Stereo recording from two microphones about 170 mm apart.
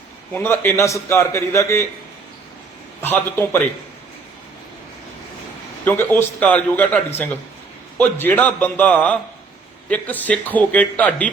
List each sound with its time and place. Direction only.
0.3 s a man's voice: 15° left (ahead or behind)
3.0 s a man's voice: 10° left (ahead or behind)
5.8 s a man's voice: 10° left (ahead or behind)